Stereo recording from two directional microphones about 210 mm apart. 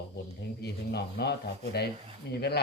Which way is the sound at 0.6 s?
50° left (ahead or behind).